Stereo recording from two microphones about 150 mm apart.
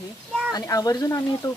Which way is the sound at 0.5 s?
25° left (ahead or behind).